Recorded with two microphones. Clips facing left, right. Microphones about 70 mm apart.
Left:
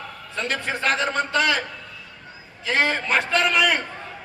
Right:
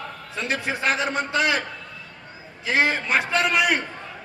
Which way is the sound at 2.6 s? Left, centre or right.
Centre.